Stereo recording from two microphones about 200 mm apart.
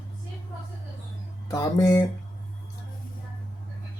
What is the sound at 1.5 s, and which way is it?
Speech, 15° left (ahead or behind).